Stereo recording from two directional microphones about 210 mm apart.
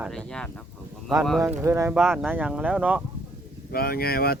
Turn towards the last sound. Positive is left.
turn(degrees=45)  # may be behind; listen again after turning